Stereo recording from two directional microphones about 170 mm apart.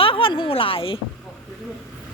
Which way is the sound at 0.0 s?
30° left (ahead or behind).